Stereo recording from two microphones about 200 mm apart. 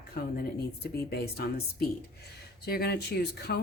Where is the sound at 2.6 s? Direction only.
50° left (ahead or behind).